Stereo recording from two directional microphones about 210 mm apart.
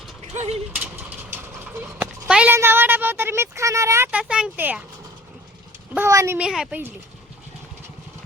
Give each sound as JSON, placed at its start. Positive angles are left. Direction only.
{"t": 0.3, "sound": "speech", "side_deg": -30}
{"t": 0.7, "sound": "a sound", "side_deg": -10}
{"t": 5.9, "sound": "a child's voice", "side_deg": -10}